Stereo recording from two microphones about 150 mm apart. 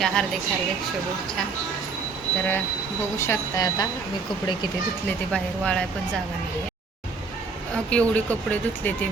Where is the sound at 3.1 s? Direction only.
20° left (ahead or behind).